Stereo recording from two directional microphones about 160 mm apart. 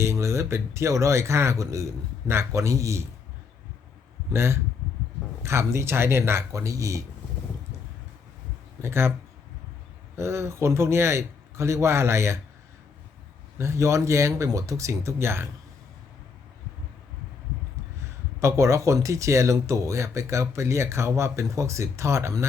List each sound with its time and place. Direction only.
0.0 s speech: 20° right (ahead or behind)
4.3 s speech: 15° right (ahead or behind)
8.8 s speech: 15° right (ahead or behind)
10.2 s speech: 15° right (ahead or behind)
13.6 s speech: 15° right (ahead or behind)
18.3 s speech: 15° right (ahead or behind)